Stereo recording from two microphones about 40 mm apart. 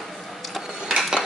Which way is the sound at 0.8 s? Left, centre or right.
Centre.